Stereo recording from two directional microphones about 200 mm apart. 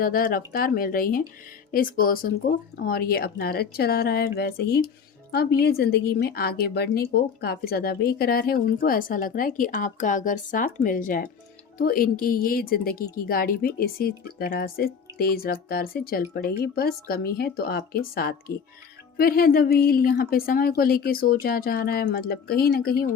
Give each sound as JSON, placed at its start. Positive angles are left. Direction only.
{"t": 0.0, "sound": "a woman's voice", "side_deg": 45}